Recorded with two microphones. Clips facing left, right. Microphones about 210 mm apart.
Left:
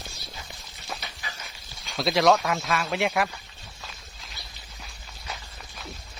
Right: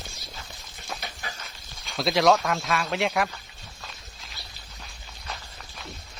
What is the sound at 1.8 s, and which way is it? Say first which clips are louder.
Speech: even; centre (ahead or behind).